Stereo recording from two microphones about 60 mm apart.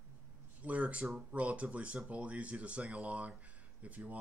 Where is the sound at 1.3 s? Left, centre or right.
Right.